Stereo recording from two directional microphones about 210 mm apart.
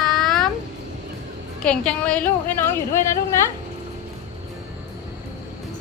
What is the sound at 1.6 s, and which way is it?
A woman's voice, 5° left (ahead or behind).